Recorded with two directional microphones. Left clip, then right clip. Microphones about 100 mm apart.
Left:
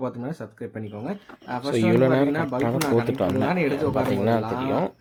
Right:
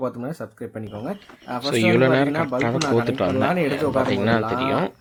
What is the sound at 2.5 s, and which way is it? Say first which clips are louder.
Speech: right 2 dB; 25° left (ahead or behind).